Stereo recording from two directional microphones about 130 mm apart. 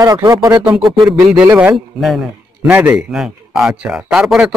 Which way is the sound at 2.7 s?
10° right (ahead or behind).